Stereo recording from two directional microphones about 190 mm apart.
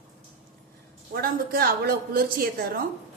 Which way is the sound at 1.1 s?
50° right (ahead or behind).